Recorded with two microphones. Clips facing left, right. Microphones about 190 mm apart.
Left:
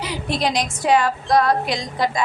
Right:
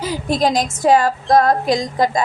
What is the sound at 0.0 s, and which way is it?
Speech, 45° right (ahead or behind).